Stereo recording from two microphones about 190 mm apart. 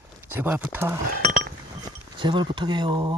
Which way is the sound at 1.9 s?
20° right (ahead or behind).